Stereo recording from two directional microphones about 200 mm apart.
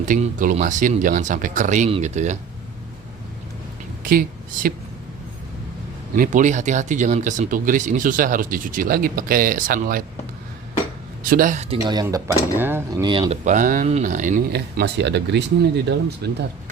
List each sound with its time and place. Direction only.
0.0 s speech: 40° right (ahead or behind)
4.0 s a woman's voice: 45° right (ahead or behind)
6.1 s speech: 40° right (ahead or behind)
11.2 s speech: 45° right (ahead or behind)
11.7 s speech: 20° right (ahead or behind)
12.5 s speech: 10° right (ahead or behind); by 16.3 s 55° right (ahead or behind)